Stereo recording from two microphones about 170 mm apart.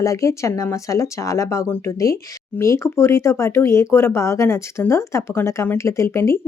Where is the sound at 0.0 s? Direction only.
15° left (ahead or behind).